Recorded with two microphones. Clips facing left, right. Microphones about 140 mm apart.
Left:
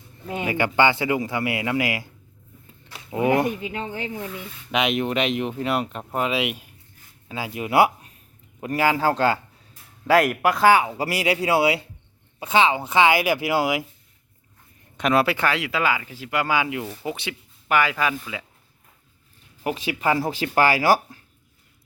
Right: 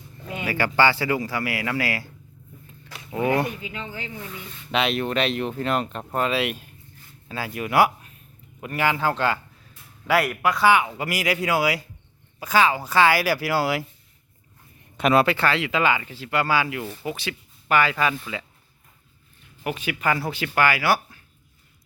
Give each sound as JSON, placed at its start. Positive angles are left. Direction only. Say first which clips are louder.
{"t": 0.4, "sound": "speech", "louder": "left 1 dB", "side_deg": 20}
{"t": 2.8, "sound": "a sound", "louder": "left 2 dB", "side_deg": 20}
{"t": 3.6, "sound": "speech", "louder": "left 5 dB", "side_deg": 45}
{"t": 4.7, "sound": "speech", "louder": "left 1 dB", "side_deg": 15}
{"t": 10.1, "sound": "speech", "louder": "left 3 dB", "side_deg": 45}
{"t": 10.8, "sound": "speech", "louder": "left 2 dB", "side_deg": 30}
{"t": 14.9, "sound": "speech", "louder": "right 1 dB", "side_deg": 0}
{"t": 15.4, "sound": "speech", "louder": "right 1 dB", "side_deg": 10}
{"t": 19.6, "sound": "speech", "louder": "left 2 dB", "side_deg": 30}